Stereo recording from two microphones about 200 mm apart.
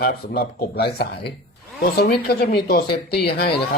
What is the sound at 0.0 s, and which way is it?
Speech, 50° left (ahead or behind).